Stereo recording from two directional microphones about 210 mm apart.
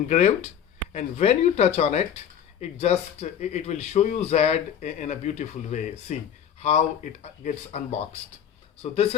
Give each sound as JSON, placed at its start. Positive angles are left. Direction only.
{"t": 0.1, "sound": "speech", "side_deg": 30}